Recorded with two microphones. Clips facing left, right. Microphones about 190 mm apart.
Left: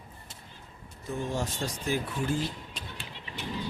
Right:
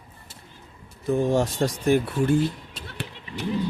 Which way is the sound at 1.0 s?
75° right (ahead or behind).